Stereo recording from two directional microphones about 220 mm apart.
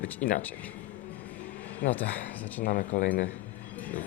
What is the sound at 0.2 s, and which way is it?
Speech, 40° left (ahead or behind).